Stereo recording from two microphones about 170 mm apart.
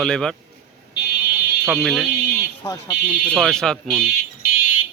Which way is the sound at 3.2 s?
5° left (ahead or behind).